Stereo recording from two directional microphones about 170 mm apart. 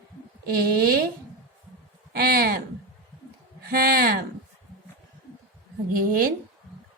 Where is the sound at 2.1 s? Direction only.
60° right (ahead or behind).